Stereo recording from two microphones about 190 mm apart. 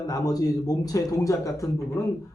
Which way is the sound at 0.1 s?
20° left (ahead or behind).